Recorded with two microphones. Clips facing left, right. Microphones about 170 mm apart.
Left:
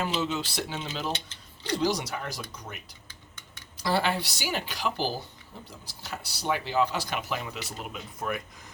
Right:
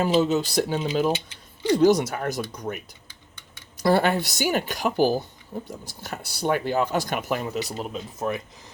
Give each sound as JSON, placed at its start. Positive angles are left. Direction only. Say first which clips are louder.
{"t": 0.0, "sound": "speech", "louder": "right 9 dB", "side_deg": -40}
{"t": 1.1, "sound": "a sound", "louder": "right 7 dB", "side_deg": -10}
{"t": 1.8, "sound": "speech", "louder": "right 9 dB", "side_deg": -50}
{"t": 3.8, "sound": "speech", "louder": "right 7 dB", "side_deg": -50}
{"t": 8.2, "sound": "speech", "louder": "right 5 dB", "side_deg": -25}